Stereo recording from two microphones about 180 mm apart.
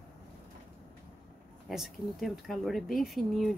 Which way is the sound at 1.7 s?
Centre (ahead or behind).